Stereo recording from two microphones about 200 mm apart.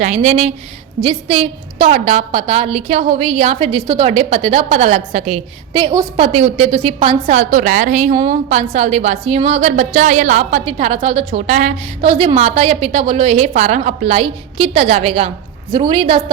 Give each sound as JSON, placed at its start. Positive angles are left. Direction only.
{"t": 0.0, "sound": "a woman's voice", "side_deg": -35}
{"t": 5.7, "sound": "a woman's voice", "side_deg": -20}
{"t": 6.2, "sound": "a woman's voice", "side_deg": -30}
{"t": 12.0, "sound": "a woman's voice", "side_deg": -25}